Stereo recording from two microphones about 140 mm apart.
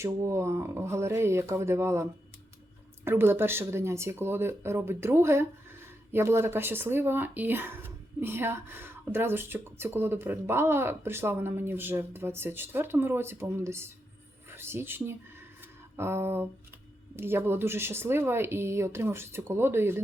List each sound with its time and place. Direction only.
0.0 s speech: 20° right (ahead or behind)